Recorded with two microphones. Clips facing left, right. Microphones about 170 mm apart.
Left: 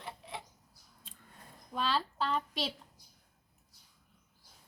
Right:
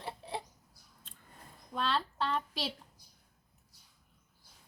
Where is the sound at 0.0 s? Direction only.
35° right (ahead or behind).